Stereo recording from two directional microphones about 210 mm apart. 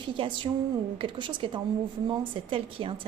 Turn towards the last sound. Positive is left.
turn(degrees=-25)  # may be behind; listen again after turning